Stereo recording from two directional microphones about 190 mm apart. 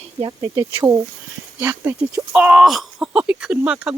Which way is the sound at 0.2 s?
20° right (ahead or behind).